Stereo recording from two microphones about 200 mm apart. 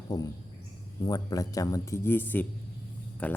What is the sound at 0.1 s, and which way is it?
Speech, 20° left (ahead or behind).